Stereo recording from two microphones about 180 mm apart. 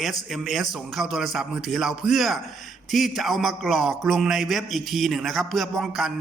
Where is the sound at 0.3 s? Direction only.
Centre (ahead or behind).